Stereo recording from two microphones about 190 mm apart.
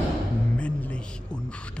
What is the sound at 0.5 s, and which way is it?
Speech, 5° left (ahead or behind).